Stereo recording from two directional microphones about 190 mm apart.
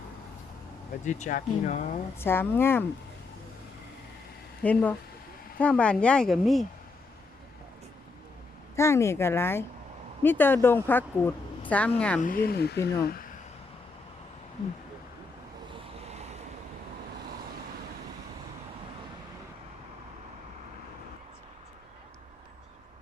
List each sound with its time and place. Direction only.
1.0 s speech: 40° left (ahead or behind)
2.1 s speech: 10° left (ahead or behind)
4.6 s speech: 5° left (ahead or behind)
8.7 s speech: 15° left (ahead or behind)
12.2 s speech: 50° left (ahead or behind)
16.0 s vehicle: 35° right (ahead or behind)